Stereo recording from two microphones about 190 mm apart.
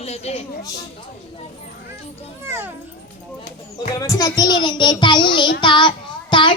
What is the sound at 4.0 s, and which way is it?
A child's voice, 20° left (ahead or behind).